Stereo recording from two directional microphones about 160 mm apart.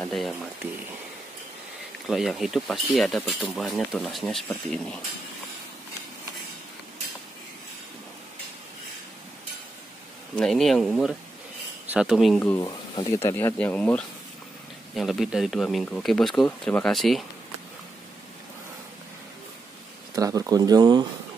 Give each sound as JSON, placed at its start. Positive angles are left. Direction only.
{"t": 0.0, "sound": "speech", "side_deg": 0}
{"t": 2.0, "sound": "speech", "side_deg": 0}
{"t": 10.3, "sound": "speech", "side_deg": 0}
{"t": 12.4, "sound": "speech", "side_deg": 10}
{"t": 15.0, "sound": "speech", "side_deg": 0}
{"t": 20.2, "sound": "speech", "side_deg": -20}